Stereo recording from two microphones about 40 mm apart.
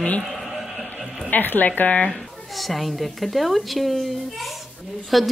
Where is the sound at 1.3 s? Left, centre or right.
Left.